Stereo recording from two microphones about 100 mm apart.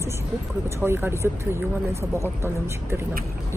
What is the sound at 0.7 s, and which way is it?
Speech, 25° right (ahead or behind).